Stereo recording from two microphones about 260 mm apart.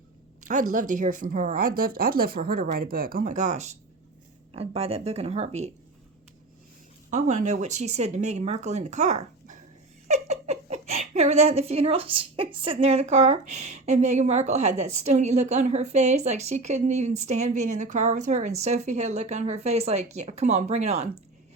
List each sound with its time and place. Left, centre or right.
0.7 s a woman's voice: right
7.1 s a woman's voice: right